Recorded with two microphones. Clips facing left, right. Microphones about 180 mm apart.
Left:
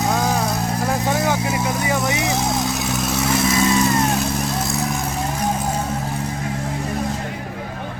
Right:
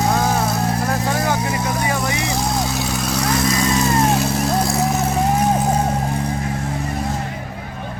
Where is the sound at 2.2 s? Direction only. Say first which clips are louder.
Even; centre (ahead or behind).